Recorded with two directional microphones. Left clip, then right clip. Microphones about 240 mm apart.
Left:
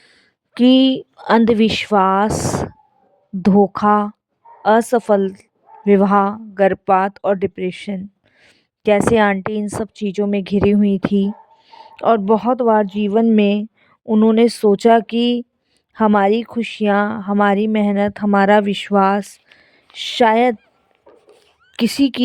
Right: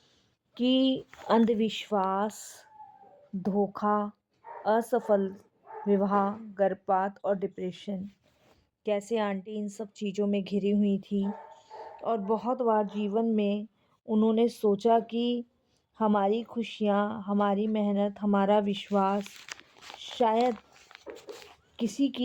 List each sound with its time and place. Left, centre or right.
0.5 s a woman's voice: left
21.8 s a woman's voice: left